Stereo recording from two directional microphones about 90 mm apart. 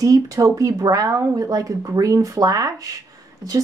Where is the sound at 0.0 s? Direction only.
40° right (ahead or behind).